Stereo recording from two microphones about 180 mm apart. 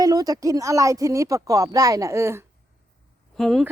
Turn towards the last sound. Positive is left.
turn(degrees=0)  # may be behind; listen again after turning